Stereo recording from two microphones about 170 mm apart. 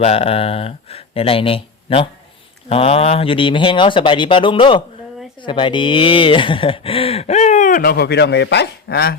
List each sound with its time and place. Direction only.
0.0 s speech: 35° left (ahead or behind); by 9.1 s 70° left (ahead or behind)